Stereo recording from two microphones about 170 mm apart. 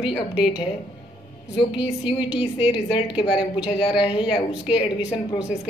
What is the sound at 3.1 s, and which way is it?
Speech, 25° left (ahead or behind).